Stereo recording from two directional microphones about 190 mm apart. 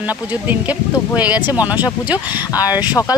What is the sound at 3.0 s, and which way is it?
Speech, 10° left (ahead or behind).